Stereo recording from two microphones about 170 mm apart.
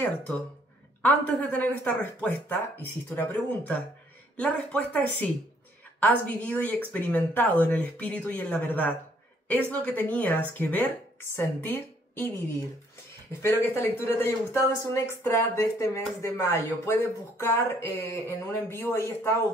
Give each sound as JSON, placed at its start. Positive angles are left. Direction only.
{"t": 1.0, "sound": "a woman's voice", "side_deg": 10}
{"t": 13.4, "sound": "speech", "side_deg": 15}